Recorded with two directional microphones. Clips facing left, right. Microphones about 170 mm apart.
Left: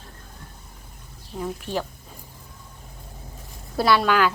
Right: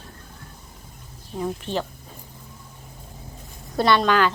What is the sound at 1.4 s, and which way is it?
Speech, 5° left (ahead or behind).